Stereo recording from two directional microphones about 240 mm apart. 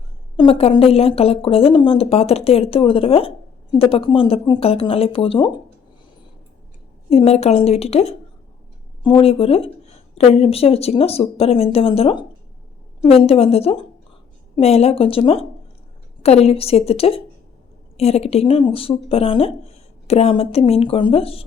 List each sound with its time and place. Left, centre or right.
0.3 s speech: left
7.1 s a woman's voice: left